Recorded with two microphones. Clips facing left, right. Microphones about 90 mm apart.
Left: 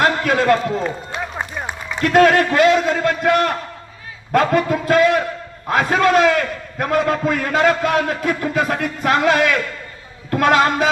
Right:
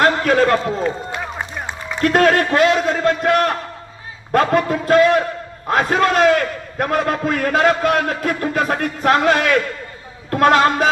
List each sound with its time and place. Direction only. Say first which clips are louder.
0.0 s run: right 2 dB; 40° right (ahead or behind)
2.0 s a man's voice: left 1 dB; 40° right (ahead or behind)